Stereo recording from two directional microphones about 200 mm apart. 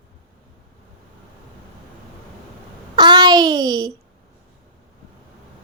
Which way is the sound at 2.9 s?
20° right (ahead or behind).